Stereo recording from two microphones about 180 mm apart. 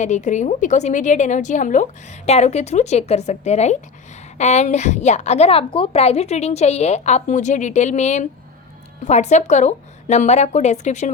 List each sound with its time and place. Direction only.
0.0 s a woman's voice: 40° left (ahead or behind)